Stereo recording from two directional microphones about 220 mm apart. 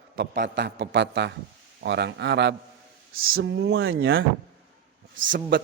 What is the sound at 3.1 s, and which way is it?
A man's voice, 65° right (ahead or behind).